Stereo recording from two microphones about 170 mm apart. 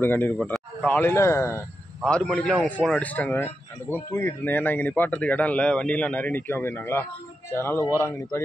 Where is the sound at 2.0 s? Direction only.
5° left (ahead or behind).